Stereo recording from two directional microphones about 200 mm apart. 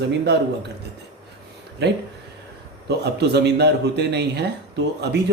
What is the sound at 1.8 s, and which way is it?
Speech, 55° right (ahead or behind).